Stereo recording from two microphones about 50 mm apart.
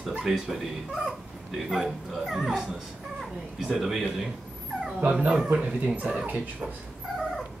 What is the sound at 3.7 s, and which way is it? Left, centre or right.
Speech, centre.